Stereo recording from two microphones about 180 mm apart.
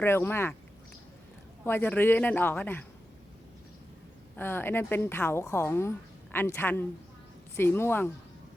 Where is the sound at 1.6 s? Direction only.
10° left (ahead or behind).